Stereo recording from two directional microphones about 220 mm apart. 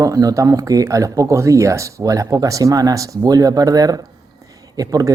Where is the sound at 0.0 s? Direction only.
15° right (ahead or behind).